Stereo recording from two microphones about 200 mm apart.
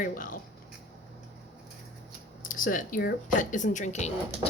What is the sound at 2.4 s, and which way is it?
Speech, 45° left (ahead or behind).